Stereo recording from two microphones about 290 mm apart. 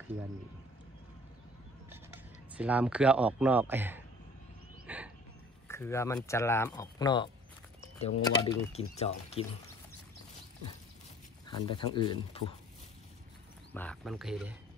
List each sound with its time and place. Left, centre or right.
2.5 s a man's voice: centre
4.8 s a sound: centre
5.7 s speech: centre
11.4 s speech: centre
13.7 s a man's voice: centre